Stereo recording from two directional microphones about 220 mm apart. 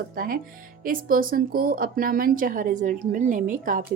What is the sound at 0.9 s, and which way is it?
Speech, 40° right (ahead or behind).